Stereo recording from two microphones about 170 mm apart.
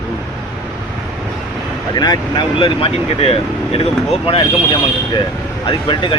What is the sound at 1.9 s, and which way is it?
Speech, 25° left (ahead or behind).